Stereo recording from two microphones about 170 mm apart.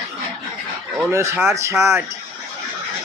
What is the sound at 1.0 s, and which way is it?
Speech, 15° right (ahead or behind).